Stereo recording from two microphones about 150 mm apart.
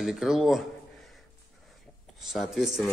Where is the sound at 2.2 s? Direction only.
Centre (ahead or behind).